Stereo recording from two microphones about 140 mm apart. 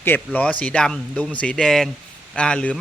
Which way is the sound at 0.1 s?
15° left (ahead or behind).